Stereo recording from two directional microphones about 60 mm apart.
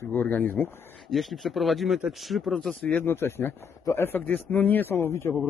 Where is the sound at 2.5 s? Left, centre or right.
Centre.